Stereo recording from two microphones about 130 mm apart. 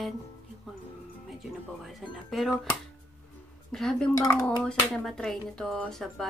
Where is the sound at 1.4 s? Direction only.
Centre (ahead or behind).